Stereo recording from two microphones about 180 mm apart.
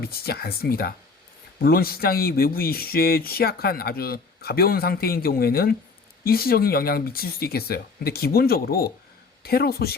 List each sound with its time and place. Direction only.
0.0 s speech: 60° left (ahead or behind)